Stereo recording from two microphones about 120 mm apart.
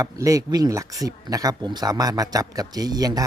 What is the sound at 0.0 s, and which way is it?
Speech, 30° right (ahead or behind).